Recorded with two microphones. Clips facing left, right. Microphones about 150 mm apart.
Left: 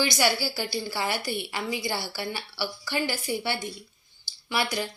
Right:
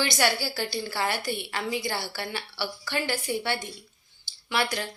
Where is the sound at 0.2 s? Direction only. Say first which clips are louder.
Even; 5° left (ahead or behind).